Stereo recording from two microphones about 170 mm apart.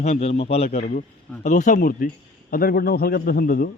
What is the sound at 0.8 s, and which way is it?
A man's voice, 50° left (ahead or behind).